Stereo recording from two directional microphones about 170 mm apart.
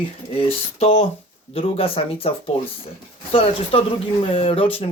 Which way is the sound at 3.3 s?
30° left (ahead or behind).